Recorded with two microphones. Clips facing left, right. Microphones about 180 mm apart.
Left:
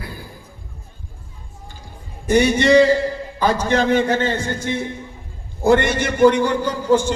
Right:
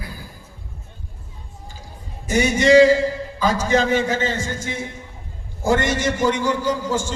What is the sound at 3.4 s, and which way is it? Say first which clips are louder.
A man's voice: left 1 dB; 60° left (ahead or behind).